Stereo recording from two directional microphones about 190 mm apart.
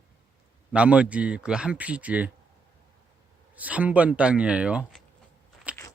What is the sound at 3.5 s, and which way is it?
A man's voice, 10° right (ahead or behind).